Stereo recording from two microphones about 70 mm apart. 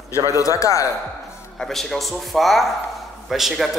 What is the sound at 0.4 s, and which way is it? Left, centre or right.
Speech, left.